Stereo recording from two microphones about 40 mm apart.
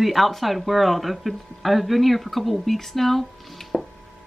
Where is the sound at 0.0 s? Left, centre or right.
Centre.